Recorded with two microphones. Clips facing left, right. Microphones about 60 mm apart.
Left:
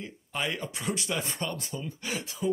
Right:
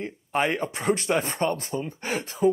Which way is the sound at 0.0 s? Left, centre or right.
Right.